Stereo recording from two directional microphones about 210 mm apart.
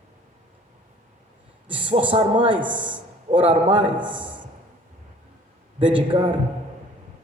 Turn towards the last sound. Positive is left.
turn(degrees=-25)  # may be behind; listen again after turning